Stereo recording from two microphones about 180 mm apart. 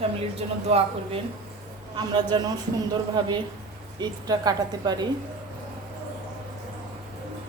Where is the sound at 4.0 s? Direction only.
20° right (ahead or behind).